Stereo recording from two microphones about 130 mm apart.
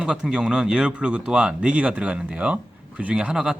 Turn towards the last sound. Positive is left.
turn(degrees=-5)  # may be behind; listen again after turning